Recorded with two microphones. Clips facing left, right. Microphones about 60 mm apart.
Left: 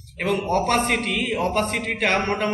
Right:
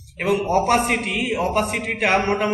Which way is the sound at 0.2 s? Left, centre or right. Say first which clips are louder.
Right 3 dB; centre.